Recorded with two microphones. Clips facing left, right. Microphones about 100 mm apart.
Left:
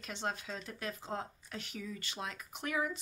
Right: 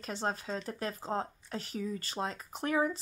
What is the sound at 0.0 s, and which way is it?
Speech, 35° right (ahead or behind).